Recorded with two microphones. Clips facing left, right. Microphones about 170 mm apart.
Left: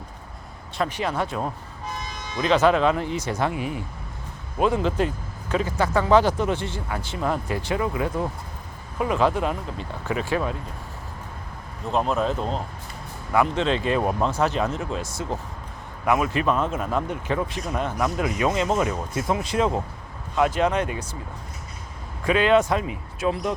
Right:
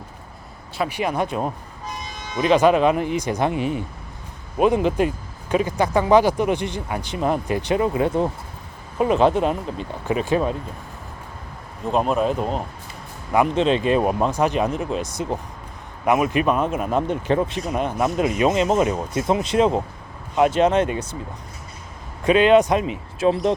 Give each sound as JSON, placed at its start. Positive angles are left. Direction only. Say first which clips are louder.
{"t": 0.8, "sound": "speech", "louder": "right 3 dB", "side_deg": -10}
{"t": 11.9, "sound": "speech", "louder": "right 3 dB", "side_deg": -15}
{"t": 17.1, "sound": "speech", "louder": "right 5 dB", "side_deg": -30}
{"t": 22.2, "sound": "speech", "louder": "right 4 dB", "side_deg": -20}